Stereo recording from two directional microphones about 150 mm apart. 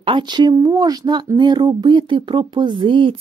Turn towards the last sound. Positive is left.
turn(degrees=-35)  # may be behind; listen again after turning